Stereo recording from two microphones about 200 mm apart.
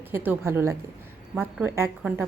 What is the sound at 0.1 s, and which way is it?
A woman's voice, 10° right (ahead or behind).